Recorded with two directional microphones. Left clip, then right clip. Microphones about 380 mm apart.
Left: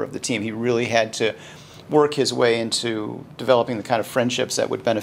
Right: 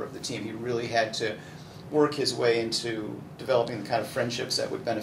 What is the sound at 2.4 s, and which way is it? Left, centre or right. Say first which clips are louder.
Speech: left 5 dB; left.